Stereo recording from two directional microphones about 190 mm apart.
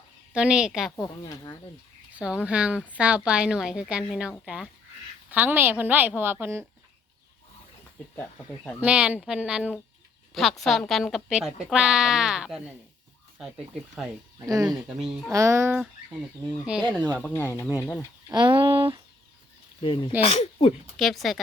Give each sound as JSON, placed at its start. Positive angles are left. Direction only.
{"t": 0.3, "sound": "speech", "side_deg": -5}
{"t": 1.0, "sound": "speech", "side_deg": 20}
{"t": 2.1, "sound": "a woman's voice", "side_deg": -5}
{"t": 8.1, "sound": "speech", "side_deg": 10}
{"t": 8.8, "sound": "speech", "side_deg": -5}
{"t": 14.4, "sound": "a woman's voice", "side_deg": -20}
{"t": 14.7, "sound": "speech", "side_deg": 0}
{"t": 15.3, "sound": "a woman's voice", "side_deg": -15}
{"t": 17.2, "sound": "speech", "side_deg": 10}
{"t": 18.3, "sound": "speech", "side_deg": -25}
{"t": 19.8, "sound": "speech", "side_deg": 25}
{"t": 20.9, "sound": "speech", "side_deg": 0}